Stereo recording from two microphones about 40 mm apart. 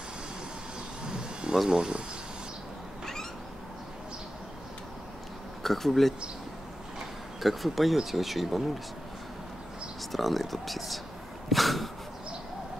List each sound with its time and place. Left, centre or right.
1.5 s speech: centre
5.6 s speech: centre
7.4 s speech: centre
10.1 s speech: centre